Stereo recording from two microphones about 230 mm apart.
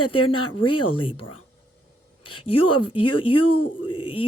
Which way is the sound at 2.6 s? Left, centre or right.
Left.